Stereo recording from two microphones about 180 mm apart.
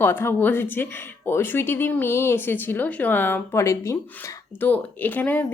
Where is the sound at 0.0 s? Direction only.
15° left (ahead or behind).